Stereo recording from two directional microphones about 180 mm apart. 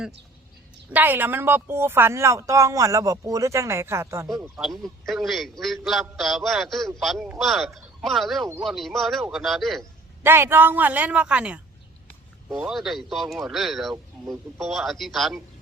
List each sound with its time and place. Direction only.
0.9 s speech: 10° right (ahead or behind)
4.8 s a man's voice: centre (ahead or behind)
10.2 s a man's voice: 15° right (ahead or behind)